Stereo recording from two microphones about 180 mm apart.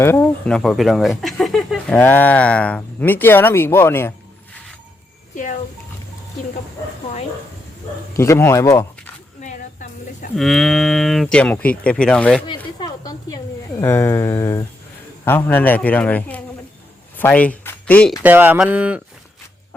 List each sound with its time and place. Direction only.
0.0 s speech: 15° left (ahead or behind)
8.1 s speech: 15° left (ahead or behind)
9.4 s a sound: 40° left (ahead or behind)
10.3 s speech: centre (ahead or behind)
12.8 s a sound: 20° left (ahead or behind)
13.8 s speech: 15° left (ahead or behind)
18.2 s speech: 10° right (ahead or behind)